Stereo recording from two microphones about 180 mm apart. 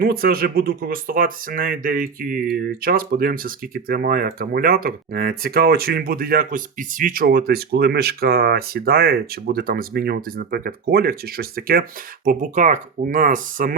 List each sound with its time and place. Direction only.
0.0 s speech: 55° right (ahead or behind)